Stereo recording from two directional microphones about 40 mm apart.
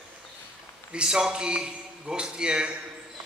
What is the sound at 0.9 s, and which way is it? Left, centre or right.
A man's voice, centre.